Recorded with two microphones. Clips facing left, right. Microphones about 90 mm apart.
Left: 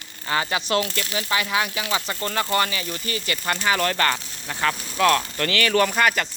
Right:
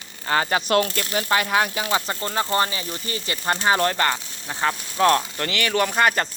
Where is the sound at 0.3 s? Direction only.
40° right (ahead or behind).